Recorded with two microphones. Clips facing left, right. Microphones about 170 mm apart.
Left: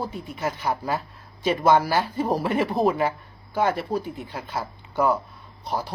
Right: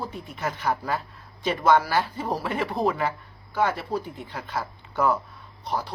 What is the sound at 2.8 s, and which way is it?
Speech, 25° left (ahead or behind).